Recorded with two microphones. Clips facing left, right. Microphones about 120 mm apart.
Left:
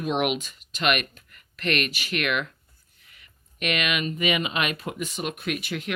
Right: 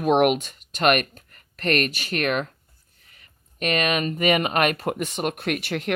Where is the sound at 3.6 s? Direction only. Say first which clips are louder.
Right 4 dB; 40° right (ahead or behind).